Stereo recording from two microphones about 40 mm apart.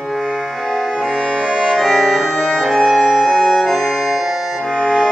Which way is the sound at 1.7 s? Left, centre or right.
Centre.